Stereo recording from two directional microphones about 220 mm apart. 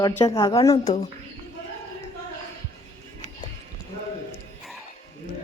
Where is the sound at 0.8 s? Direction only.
30° left (ahead or behind).